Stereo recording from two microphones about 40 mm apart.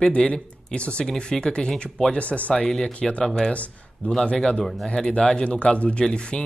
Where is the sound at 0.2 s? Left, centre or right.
Left.